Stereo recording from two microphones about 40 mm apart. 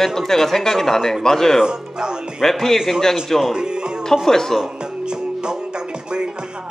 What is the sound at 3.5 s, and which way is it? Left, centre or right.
Speech, right.